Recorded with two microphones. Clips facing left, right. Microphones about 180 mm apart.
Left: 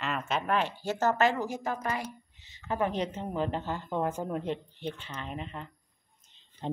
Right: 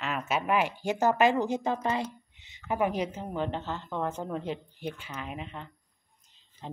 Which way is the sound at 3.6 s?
15° left (ahead or behind).